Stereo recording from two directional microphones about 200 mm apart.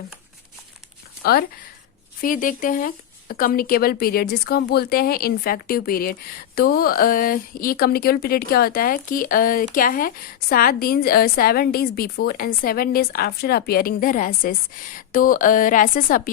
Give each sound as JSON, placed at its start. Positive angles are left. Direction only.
{"t": 1.2, "sound": "speech", "side_deg": 50}